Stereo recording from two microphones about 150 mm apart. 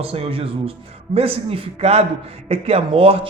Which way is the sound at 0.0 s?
40° right (ahead or behind).